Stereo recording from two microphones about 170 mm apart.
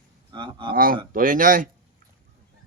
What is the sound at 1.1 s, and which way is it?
Speech, 55° right (ahead or behind).